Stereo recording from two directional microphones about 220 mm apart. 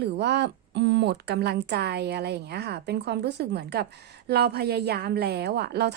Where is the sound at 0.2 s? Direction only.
50° right (ahead or behind).